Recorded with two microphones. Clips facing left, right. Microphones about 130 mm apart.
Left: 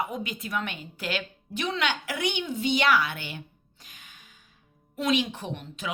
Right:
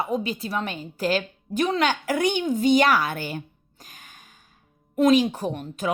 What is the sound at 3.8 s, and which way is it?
Music, 45° right (ahead or behind).